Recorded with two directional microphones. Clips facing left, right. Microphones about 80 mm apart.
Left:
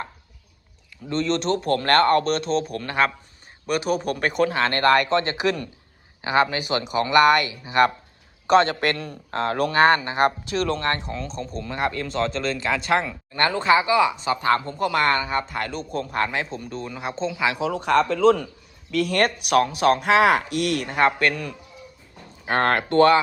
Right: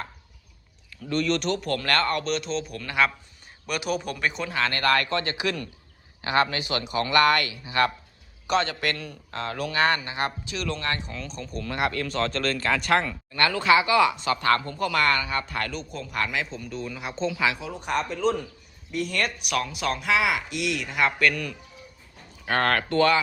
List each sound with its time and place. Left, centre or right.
1.1 s a man's voice: left
4.4 s a man's voice: left
8.4 s a man's voice: left
11.6 s speech: centre
15.7 s a man's voice: left
17.6 s a man's voice: left